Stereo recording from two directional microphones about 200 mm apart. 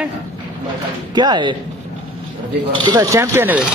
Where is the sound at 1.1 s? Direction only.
20° right (ahead or behind).